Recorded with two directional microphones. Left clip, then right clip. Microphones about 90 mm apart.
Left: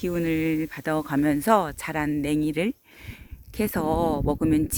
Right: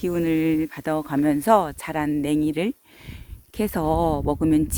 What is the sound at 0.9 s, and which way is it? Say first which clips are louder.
Speech: even; 15° right (ahead or behind).